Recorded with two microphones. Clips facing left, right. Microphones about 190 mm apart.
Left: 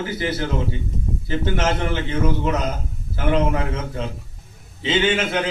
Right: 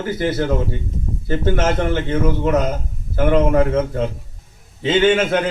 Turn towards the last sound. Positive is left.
turn(degrees=-50)  # may be behind; listen again after turning